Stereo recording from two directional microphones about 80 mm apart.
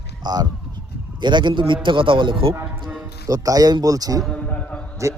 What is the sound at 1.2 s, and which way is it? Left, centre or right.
A man's voice, right.